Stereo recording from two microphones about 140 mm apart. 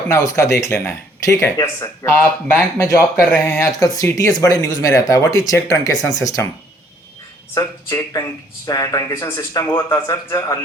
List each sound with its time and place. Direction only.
0.1 s speech: 20° left (ahead or behind)
7.5 s speech: 25° left (ahead or behind)